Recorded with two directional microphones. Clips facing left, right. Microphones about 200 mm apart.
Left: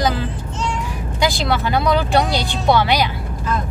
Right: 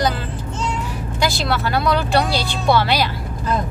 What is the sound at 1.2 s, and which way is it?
Speech, 15° left (ahead or behind).